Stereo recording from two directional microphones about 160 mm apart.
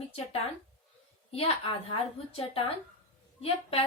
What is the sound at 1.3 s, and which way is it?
A woman's voice, 40° left (ahead or behind).